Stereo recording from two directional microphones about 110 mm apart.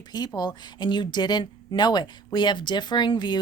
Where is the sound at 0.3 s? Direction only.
40° left (ahead or behind).